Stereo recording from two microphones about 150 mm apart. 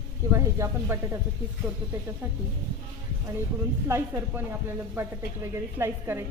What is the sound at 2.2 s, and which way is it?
Speech, 15° right (ahead or behind).